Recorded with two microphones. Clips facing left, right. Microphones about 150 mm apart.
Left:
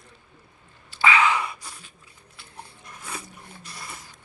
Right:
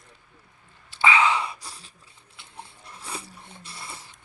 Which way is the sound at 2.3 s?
25° right (ahead or behind).